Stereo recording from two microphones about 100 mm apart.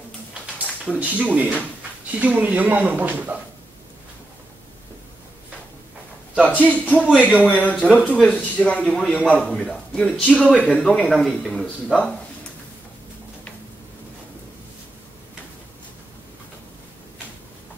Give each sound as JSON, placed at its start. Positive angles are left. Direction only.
{"t": 0.9, "sound": "speech", "side_deg": -15}
{"t": 6.3, "sound": "a man's voice", "side_deg": -15}
{"t": 6.6, "sound": "speech", "side_deg": 15}